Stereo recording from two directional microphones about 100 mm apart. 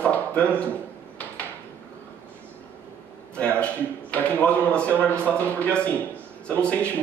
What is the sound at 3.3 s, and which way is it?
A man's voice, 10° left (ahead or behind).